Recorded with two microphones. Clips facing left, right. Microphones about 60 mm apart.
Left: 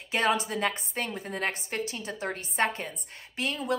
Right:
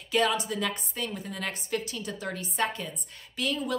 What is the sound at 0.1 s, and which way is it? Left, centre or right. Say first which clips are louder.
A woman's voice: even; left.